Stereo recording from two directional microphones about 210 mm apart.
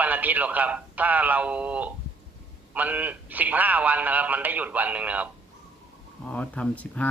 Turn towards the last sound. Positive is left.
turn(degrees=5)  # may be behind; listen again after turning